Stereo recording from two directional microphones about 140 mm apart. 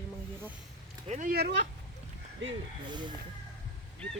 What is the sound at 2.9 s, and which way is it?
Music, 35° right (ahead or behind).